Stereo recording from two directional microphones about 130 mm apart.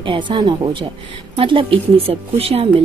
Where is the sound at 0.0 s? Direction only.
40° right (ahead or behind).